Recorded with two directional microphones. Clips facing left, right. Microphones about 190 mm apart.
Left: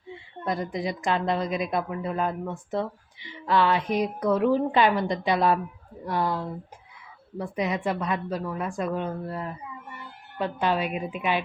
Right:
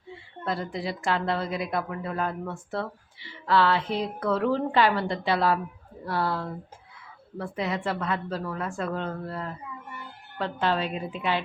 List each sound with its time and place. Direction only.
0.4 s a woman's voice: 15° left (ahead or behind)